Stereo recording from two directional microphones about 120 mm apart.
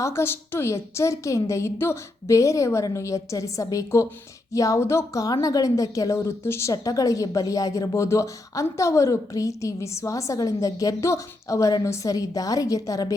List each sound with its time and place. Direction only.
0.0 s a woman's voice: 20° left (ahead or behind)